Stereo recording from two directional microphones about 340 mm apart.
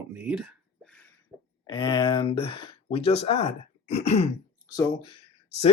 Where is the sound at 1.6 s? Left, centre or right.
Centre.